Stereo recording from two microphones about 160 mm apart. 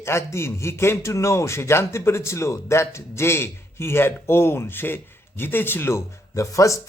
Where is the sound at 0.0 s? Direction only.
15° left (ahead or behind).